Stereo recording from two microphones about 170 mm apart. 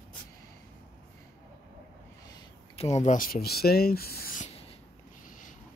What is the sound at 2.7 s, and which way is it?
Speech, 40° left (ahead or behind).